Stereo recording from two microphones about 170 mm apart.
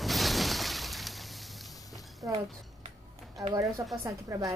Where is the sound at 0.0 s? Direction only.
Centre (ahead or behind).